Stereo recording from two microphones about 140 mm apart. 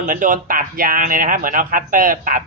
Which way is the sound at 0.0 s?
70° right (ahead or behind).